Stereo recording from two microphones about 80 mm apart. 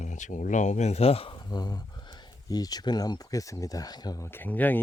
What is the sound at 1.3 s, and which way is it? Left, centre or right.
Speech, left.